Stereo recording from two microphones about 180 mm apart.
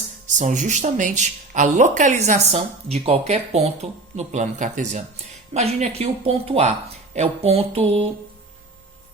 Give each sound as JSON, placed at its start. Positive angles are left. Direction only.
{"t": 0.3, "sound": "speech", "side_deg": -45}